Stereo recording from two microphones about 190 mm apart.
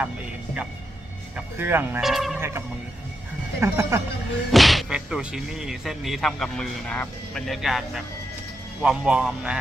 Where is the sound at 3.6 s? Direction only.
15° right (ahead or behind).